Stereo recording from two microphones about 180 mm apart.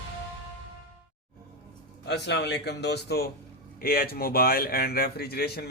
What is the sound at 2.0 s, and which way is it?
A man's voice, 70° left (ahead or behind).